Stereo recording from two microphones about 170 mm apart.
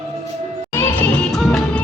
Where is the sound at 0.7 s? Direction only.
10° left (ahead or behind).